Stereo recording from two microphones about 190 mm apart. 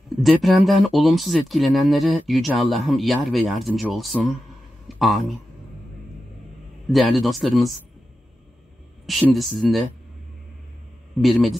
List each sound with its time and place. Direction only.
0.2 s speech: centre (ahead or behind)
4.8 s a sound: centre (ahead or behind)
6.9 s speech: centre (ahead or behind)
9.0 s speech: centre (ahead or behind)
11.1 s speech: centre (ahead or behind)